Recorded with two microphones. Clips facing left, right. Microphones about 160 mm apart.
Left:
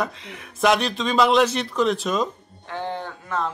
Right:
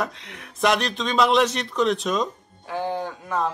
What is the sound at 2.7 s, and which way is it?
Speech, 10° right (ahead or behind).